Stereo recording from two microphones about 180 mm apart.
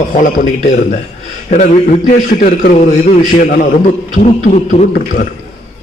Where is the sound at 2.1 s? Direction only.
45° left (ahead or behind).